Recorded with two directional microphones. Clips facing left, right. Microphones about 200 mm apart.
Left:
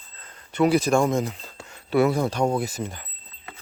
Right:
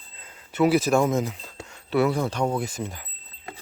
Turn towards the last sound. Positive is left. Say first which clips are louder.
# left 1 dB
turn(degrees=0)  # may be behind; listen again after turning